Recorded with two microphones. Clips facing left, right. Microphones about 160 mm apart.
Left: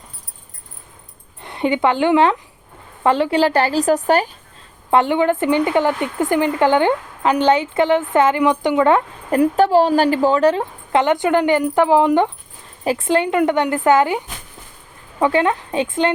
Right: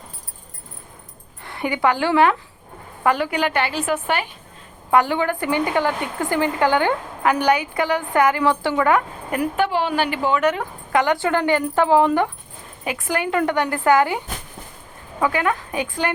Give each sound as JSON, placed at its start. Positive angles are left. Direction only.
{"t": 1.4, "sound": "a woman's voice", "side_deg": 20}
{"t": 4.9, "sound": "a woman's voice", "side_deg": 25}
{"t": 12.8, "sound": "a woman's voice", "side_deg": 30}
{"t": 15.2, "sound": "a woman's voice", "side_deg": 25}